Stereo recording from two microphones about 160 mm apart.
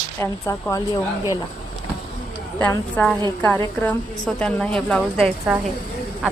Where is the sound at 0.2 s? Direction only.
20° left (ahead or behind).